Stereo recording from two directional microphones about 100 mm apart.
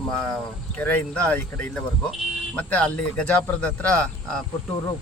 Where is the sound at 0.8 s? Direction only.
15° left (ahead or behind).